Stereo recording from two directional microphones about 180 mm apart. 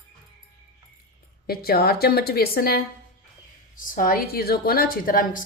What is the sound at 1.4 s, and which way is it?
A woman's voice, 60° left (ahead or behind).